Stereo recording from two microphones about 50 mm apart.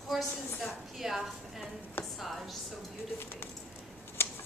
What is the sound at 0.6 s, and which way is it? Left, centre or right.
A woman's voice, centre.